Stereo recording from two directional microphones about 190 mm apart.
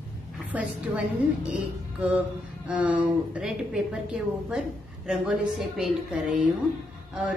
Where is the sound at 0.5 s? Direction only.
10° right (ahead or behind).